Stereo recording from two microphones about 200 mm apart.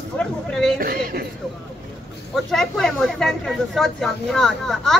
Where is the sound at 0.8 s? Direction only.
45° right (ahead or behind).